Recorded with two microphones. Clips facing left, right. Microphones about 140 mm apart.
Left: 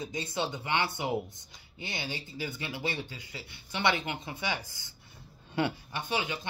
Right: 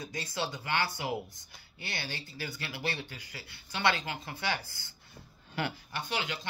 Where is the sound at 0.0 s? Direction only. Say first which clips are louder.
Left 3 dB; 25° left (ahead or behind).